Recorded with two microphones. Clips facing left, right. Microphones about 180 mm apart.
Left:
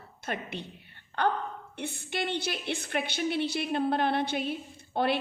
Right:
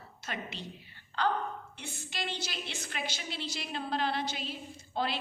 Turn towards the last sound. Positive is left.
turn(degrees=60)  # may be behind; listen again after turning